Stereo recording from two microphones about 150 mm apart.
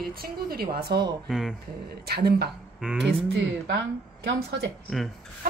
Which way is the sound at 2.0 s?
90° right.